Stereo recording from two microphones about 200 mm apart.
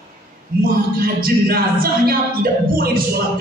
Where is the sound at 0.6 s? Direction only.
50° right (ahead or behind).